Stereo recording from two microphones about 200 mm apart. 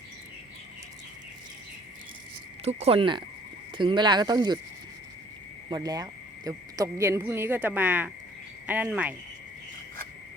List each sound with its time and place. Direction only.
2.6 s speech: 30° right (ahead or behind)
5.6 s speech: 20° right (ahead or behind)